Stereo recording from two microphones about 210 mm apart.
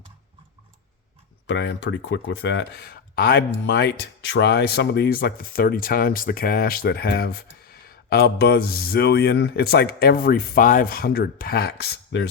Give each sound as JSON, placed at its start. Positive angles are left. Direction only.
{"t": 1.5, "sound": "speech", "side_deg": 55}